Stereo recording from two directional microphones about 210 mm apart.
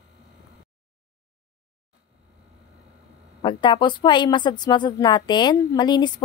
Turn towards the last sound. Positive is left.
turn(degrees=20)  # may be behind; listen again after turning